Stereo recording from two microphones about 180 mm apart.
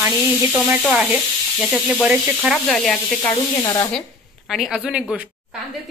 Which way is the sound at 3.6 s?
20° left (ahead or behind).